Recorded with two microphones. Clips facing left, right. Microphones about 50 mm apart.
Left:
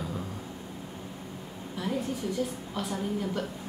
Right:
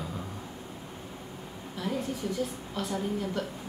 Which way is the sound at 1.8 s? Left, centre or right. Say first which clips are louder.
Left 1 dB; centre.